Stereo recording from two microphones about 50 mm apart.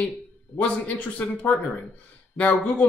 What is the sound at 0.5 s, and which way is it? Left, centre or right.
Speech, left.